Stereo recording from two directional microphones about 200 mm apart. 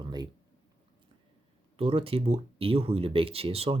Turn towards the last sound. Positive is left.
turn(degrees=-30)  # may be behind; listen again after turning